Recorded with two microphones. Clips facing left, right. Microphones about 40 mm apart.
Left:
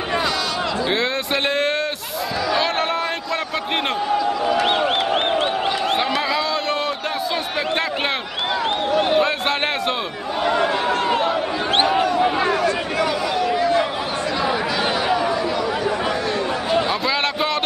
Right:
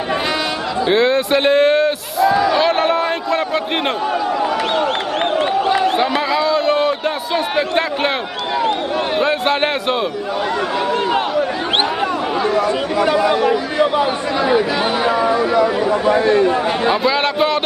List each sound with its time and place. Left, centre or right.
0.8 s a man's voice: centre
2.5 s a sound: centre
6.1 s a sound: centre
7.5 s a man's voice: centre
9.2 s a man's voice: centre
12.6 s speech: right
15.0 s chatter: right
16.9 s a man's voice: centre